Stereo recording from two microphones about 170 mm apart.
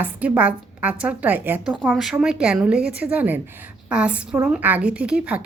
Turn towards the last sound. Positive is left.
turn(degrees=-5)  # may be behind; listen again after turning